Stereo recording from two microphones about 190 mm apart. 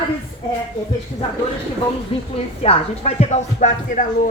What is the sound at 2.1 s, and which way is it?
Speech, 30° left (ahead or behind).